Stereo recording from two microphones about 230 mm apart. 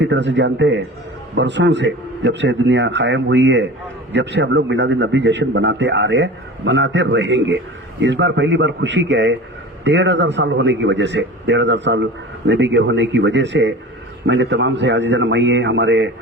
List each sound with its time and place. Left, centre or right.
0.0 s a man's voice: right